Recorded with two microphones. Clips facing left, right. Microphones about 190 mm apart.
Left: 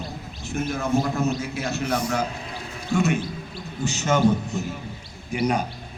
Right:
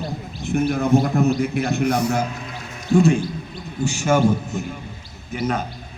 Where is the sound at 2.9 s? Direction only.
30° right (ahead or behind).